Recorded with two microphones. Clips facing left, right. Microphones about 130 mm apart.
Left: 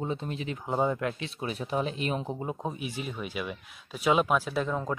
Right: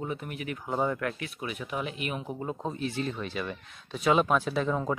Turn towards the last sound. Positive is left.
turn(degrees=0)  # may be behind; listen again after turning